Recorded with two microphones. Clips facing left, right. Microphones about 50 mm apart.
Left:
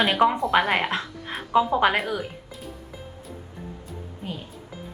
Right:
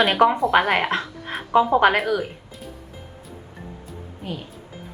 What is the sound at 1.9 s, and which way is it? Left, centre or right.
Speech, centre.